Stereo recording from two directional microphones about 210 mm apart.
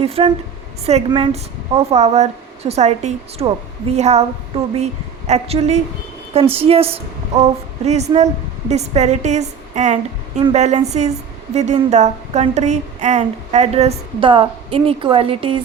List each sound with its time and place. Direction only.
0.0 s a woman's voice: 25° right (ahead or behind)